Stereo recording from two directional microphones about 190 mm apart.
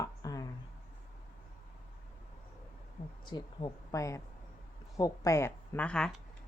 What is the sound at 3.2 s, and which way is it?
Speech, 25° left (ahead or behind).